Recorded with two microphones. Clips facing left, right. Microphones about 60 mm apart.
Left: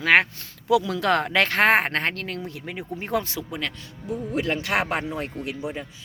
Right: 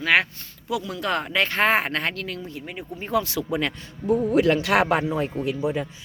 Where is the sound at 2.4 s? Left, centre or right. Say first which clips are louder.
Left 1 dB; left.